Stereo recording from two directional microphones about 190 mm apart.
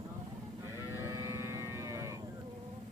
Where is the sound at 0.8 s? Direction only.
15° right (ahead or behind).